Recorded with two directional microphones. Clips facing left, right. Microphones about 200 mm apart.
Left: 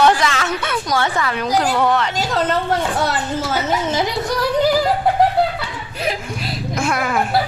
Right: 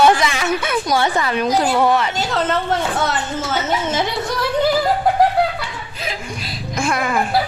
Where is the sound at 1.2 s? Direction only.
25° right (ahead or behind).